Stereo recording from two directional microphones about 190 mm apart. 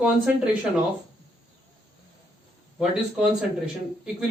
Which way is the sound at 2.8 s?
5° right (ahead or behind).